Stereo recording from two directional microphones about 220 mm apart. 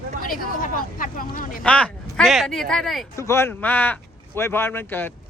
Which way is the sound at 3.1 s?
10° left (ahead or behind).